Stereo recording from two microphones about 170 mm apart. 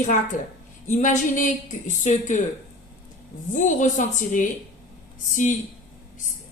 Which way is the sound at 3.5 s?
45° left (ahead or behind).